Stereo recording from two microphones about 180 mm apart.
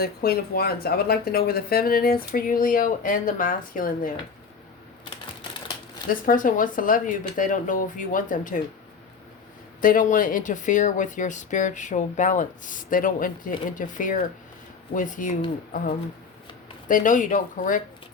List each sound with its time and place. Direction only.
0.0 s speech: 55° left (ahead or behind)
6.1 s speech: 50° left (ahead or behind)
9.8 s speech: 50° left (ahead or behind)